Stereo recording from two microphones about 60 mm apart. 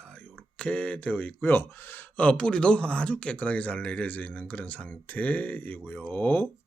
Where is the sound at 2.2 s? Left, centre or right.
Centre.